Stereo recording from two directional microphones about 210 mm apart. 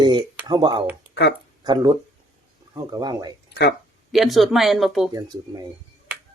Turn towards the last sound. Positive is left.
turn(degrees=0)  # may be behind; listen again after turning